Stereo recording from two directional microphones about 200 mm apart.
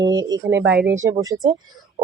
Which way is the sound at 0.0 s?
20° right (ahead or behind).